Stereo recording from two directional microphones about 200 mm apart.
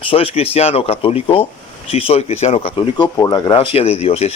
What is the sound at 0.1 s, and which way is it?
Speech, 30° left (ahead or behind).